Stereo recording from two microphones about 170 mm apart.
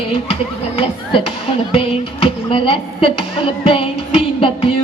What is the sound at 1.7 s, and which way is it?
Music, 30° left (ahead or behind).